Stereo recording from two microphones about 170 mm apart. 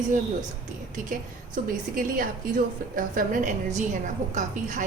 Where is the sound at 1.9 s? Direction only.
55° right (ahead or behind).